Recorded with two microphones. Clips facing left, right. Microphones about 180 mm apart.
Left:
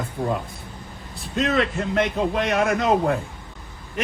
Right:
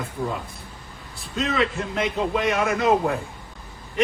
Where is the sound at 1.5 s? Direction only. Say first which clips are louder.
Left 1 dB; 50° left (ahead or behind).